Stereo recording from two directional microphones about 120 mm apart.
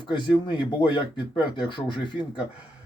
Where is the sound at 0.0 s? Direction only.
40° left (ahead or behind).